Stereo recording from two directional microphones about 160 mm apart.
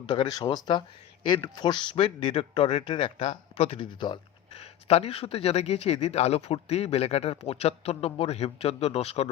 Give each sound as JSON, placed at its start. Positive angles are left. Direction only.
{"t": 0.0, "sound": "speech", "side_deg": 30}
{"t": 4.6, "sound": "speech", "side_deg": 40}